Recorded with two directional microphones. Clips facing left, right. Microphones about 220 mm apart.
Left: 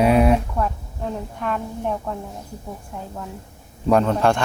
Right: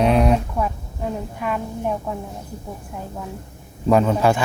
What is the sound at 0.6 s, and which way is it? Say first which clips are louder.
A woman's voice: even; 5° right (ahead or behind).